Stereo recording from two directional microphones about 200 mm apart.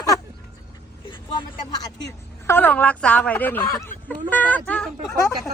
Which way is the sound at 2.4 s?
10° left (ahead or behind).